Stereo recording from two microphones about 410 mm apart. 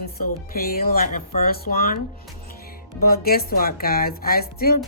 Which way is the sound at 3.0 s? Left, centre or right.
Left.